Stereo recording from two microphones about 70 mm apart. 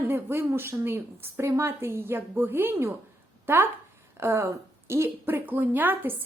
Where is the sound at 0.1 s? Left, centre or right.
Right.